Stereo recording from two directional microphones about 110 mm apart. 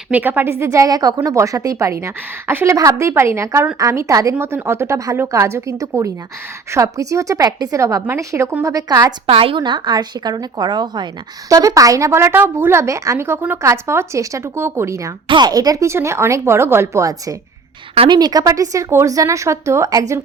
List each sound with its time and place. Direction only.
0.1 s a woman's voice: 15° right (ahead or behind); by 9.1 s 35° right (ahead or behind)
9.2 s a woman's voice: 60° right (ahead or behind)
9.6 s speech: 45° right (ahead or behind); by 15.1 s 25° right (ahead or behind)
15.3 s speech: 40° right (ahead or behind)